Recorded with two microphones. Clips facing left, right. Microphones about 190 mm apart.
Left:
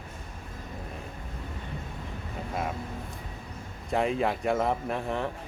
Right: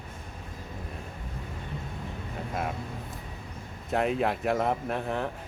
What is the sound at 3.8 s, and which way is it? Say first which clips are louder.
Speech: even; centre (ahead or behind).